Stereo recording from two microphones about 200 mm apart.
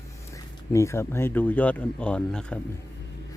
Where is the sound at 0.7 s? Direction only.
15° left (ahead or behind).